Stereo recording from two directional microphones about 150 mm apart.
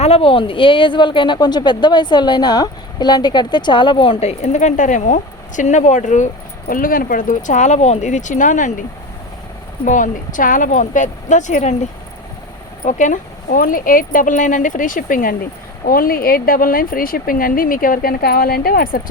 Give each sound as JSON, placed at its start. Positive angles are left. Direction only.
{"t": 0.0, "sound": "speech", "side_deg": 40}
{"t": 9.8, "sound": "speech", "side_deg": 60}
{"t": 12.8, "sound": "speech", "side_deg": 55}